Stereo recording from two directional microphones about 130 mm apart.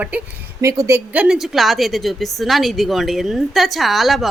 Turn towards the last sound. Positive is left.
turn(degrees=0)  # may be behind; listen again after turning